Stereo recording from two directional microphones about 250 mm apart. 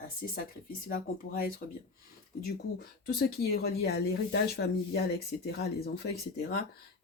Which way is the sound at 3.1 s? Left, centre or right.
Left.